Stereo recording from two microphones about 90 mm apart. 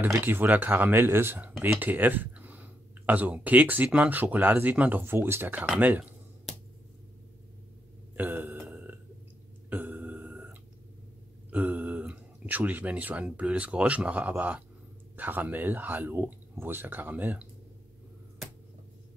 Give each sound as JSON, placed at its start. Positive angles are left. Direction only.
{"t": 0.2, "sound": "speech", "side_deg": -20}
{"t": 8.2, "sound": "burping", "side_deg": -20}
{"t": 11.5, "sound": "speech", "side_deg": -15}